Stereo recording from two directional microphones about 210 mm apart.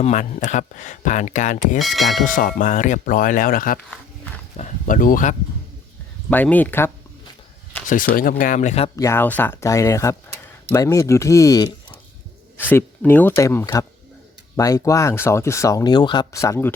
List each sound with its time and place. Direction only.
0.0 s speech: 35° left (ahead or behind)
1.8 s speech: centre (ahead or behind)
2.2 s speech: 40° left (ahead or behind)
6.3 s speech: 10° left (ahead or behind)
7.9 s speech: 40° left (ahead or behind)
9.0 s speech: 10° left (ahead or behind)